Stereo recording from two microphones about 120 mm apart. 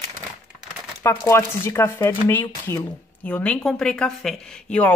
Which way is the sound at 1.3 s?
20° left (ahead or behind).